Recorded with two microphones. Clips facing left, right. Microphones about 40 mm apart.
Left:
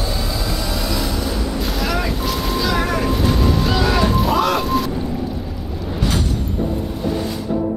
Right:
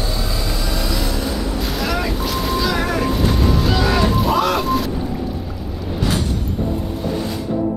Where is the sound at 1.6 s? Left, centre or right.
Centre.